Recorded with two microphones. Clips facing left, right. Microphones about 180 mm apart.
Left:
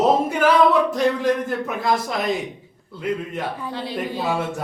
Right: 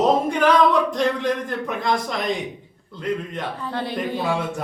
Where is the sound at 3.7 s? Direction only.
55° right (ahead or behind).